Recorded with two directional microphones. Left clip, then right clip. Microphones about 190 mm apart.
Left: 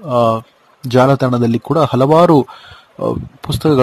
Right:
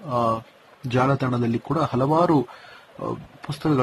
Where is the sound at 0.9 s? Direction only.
55° left (ahead or behind).